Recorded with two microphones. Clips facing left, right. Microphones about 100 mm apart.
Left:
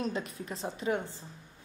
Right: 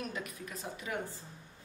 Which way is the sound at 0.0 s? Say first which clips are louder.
Left 6 dB; 30° left (ahead or behind).